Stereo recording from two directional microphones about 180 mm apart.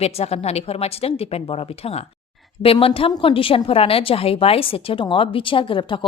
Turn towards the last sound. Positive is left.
turn(degrees=25)  # may be behind; listen again after turning